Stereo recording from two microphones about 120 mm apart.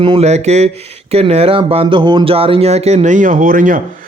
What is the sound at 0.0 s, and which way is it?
Speech, 45° right (ahead or behind).